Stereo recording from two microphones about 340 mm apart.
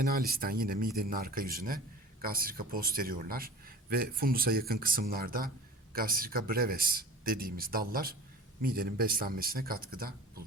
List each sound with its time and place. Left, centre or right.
0.0 s a man's voice: right